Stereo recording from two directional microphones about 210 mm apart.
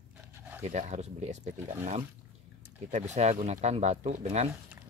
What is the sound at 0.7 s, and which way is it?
Speech, 35° right (ahead or behind).